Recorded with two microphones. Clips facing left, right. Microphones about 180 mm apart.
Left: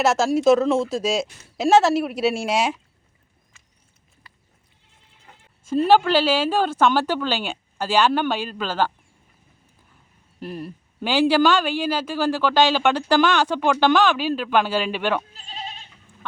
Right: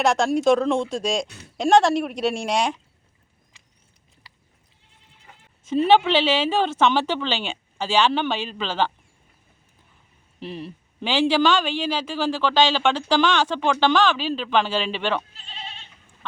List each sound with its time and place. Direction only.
0.0 s speech: 5° left (ahead or behind)
5.6 s a man's voice: 5° left (ahead or behind)
10.4 s a man's voice: 5° left (ahead or behind)
15.3 s goat: 40° left (ahead or behind)